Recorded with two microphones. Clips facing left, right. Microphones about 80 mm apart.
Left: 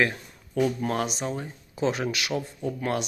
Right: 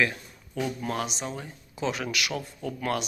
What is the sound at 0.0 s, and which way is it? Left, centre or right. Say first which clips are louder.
Speech: left 2 dB; left.